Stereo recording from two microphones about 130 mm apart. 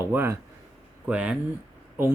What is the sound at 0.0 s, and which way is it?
Speech, 20° right (ahead or behind).